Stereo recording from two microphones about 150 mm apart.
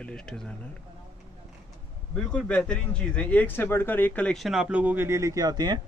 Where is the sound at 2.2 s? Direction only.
10° left (ahead or behind).